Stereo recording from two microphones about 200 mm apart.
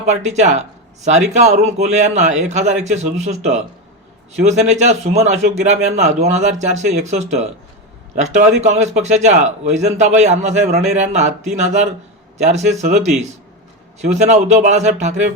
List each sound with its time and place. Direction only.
0.0 s speech: 35° right (ahead or behind)